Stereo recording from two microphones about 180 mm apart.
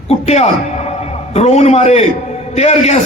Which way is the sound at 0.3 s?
35° left (ahead or behind).